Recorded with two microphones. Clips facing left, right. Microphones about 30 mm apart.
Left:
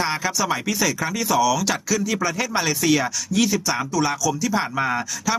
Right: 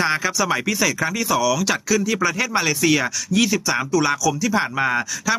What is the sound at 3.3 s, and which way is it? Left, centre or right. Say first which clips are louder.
Speech: right 2 dB; right.